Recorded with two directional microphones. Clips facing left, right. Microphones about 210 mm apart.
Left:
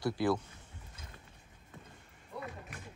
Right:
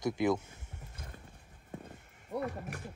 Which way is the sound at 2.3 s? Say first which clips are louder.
Right 8 dB; 50° right (ahead or behind).